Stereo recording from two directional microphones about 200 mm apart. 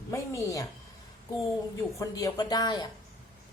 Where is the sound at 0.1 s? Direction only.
15° left (ahead or behind).